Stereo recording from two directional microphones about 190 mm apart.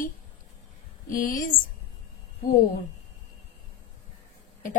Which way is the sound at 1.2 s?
50° left (ahead or behind).